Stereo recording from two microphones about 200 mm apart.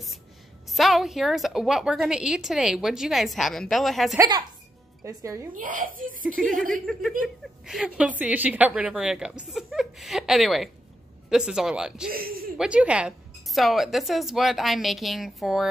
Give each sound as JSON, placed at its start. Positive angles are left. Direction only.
{"t": 0.7, "sound": "a woman's voice", "side_deg": 0}
{"t": 5.0, "sound": "a woman's voice", "side_deg": -15}
{"t": 5.5, "sound": "a woman's voice", "side_deg": -45}
{"t": 6.4, "sound": "a woman's voice", "side_deg": 0}